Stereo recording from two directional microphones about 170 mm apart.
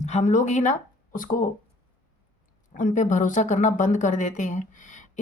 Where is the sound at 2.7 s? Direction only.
50° left (ahead or behind).